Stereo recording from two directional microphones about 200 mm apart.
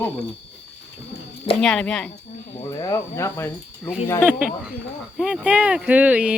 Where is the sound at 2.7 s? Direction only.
15° left (ahead or behind).